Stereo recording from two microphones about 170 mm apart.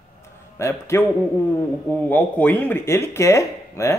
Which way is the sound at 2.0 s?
10° left (ahead or behind).